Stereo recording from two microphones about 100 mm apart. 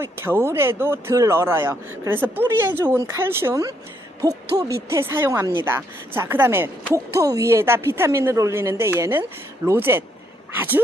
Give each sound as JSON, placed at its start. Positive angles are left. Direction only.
{"t": 0.0, "sound": "speech", "side_deg": -25}
{"t": 4.2, "sound": "speech", "side_deg": -40}